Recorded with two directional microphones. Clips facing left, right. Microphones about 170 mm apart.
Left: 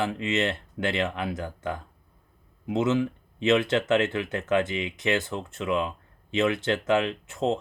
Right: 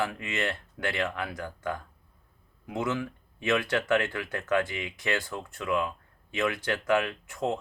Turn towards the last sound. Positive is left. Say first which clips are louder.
# left 4 dB
turn(degrees=25)  # may be behind; listen again after turning